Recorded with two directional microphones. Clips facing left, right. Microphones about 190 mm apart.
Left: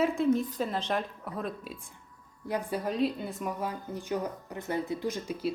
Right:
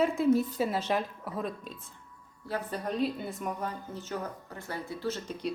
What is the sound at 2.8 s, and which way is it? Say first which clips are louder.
Speech: right 1 dB; centre (ahead or behind).